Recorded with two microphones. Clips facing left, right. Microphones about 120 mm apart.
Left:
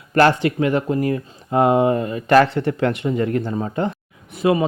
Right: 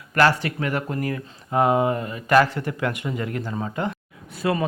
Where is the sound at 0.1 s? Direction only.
25° left (ahead or behind).